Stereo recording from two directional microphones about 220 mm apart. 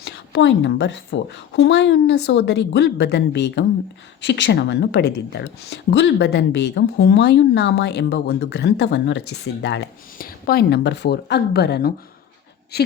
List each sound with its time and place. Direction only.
0.0 s speech: 50° left (ahead or behind)